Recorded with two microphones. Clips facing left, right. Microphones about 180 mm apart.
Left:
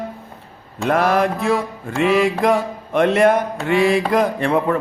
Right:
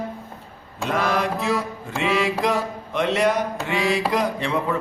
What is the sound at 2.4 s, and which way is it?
A man's voice, 55° left (ahead or behind).